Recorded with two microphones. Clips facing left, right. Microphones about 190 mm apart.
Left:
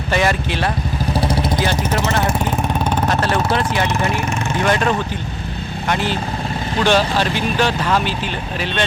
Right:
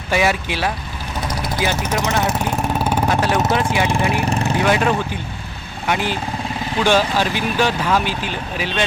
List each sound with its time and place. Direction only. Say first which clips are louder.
0.1 s speech: even; 5° right (ahead or behind)
1.1 s vehicle: left 5 dB; 30° left (ahead or behind)
1.5 s speech: left 1 dB; 10° right (ahead or behind)
2.0 s vehicle: right 1 dB; 5° right (ahead or behind)
3.3 s speech: even; 10° right (ahead or behind)
4.3 s vehicle: right 2 dB; 35° right (ahead or behind)
4.5 s speech: left 1 dB; 10° right (ahead or behind)